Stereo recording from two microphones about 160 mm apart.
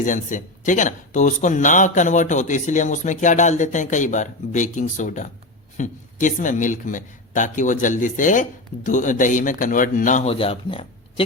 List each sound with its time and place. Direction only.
0.0 s speech: 55° left (ahead or behind)
10.2 s speech: 35° left (ahead or behind)